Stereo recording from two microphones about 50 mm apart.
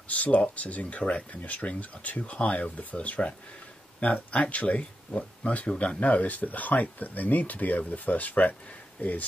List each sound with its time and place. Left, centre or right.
0.1 s speech: left
5.9 s speech: left